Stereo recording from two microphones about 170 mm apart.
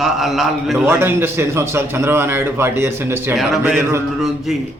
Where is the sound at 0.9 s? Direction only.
15° right (ahead or behind).